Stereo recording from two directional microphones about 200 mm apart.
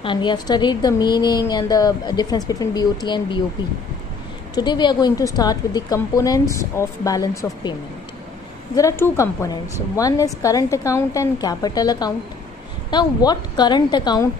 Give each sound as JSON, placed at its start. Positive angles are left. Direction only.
{"t": 0.0, "sound": "a woman's voice", "side_deg": 25}
{"t": 4.6, "sound": "a woman's voice", "side_deg": 20}
{"t": 8.7, "sound": "a woman's voice", "side_deg": 15}